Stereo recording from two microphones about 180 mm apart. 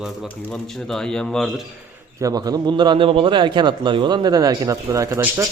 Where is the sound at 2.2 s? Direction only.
20° right (ahead or behind).